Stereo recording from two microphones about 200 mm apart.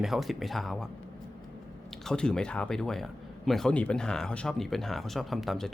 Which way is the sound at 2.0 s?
5° left (ahead or behind).